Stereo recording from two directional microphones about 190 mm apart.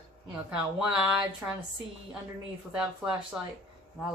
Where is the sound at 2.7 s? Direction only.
5° right (ahead or behind).